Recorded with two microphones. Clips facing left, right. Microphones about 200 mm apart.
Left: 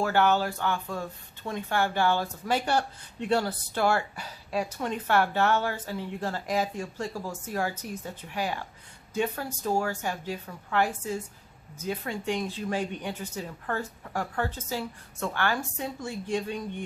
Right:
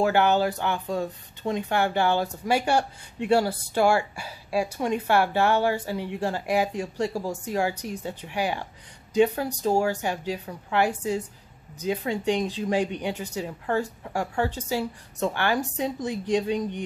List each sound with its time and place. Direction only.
0.0 s speech: 15° right (ahead or behind)